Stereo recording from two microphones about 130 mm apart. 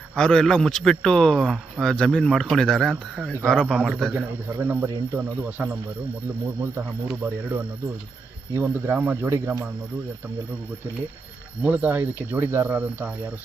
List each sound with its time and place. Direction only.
0.2 s a man's voice: 5° left (ahead or behind)
3.7 s cricket: 5° right (ahead or behind)
4.5 s cricket: 15° right (ahead or behind)
6.4 s speech: 20° right (ahead or behind)
7.1 s cricket: 15° right (ahead or behind)
11.6 s cricket: 10° right (ahead or behind)